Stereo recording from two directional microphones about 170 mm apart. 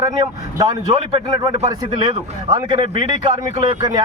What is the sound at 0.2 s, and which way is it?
A man's voice, 25° right (ahead or behind).